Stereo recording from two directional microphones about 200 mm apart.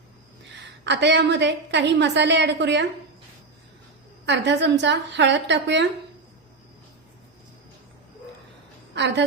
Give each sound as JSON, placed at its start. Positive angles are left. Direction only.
{"t": 0.9, "sound": "a woman's voice", "side_deg": -60}
{"t": 4.3, "sound": "a woman's voice", "side_deg": -60}